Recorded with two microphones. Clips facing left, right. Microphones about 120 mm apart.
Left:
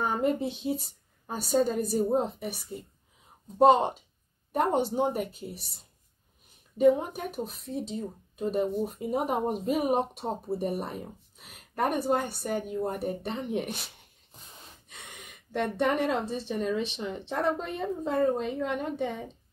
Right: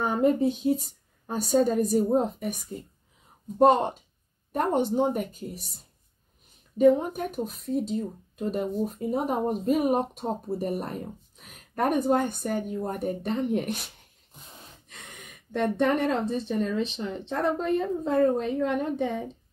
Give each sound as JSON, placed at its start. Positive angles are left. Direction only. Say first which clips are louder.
{"t": 0.2, "sound": "speech", "louder": "right 5 dB", "side_deg": 0}
{"t": 5.3, "sound": "speech", "louder": "right 3 dB", "side_deg": -45}
{"t": 6.8, "sound": "speech", "louder": "right 2 dB", "side_deg": 10}
{"t": 14.9, "sound": "speech", "louder": "even", "side_deg": 5}